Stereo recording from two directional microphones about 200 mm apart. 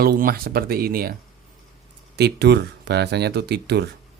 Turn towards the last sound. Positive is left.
turn(degrees=-55)  # may be behind; listen again after turning